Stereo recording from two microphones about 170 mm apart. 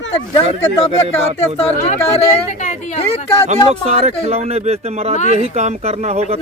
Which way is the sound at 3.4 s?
40° right (ahead or behind).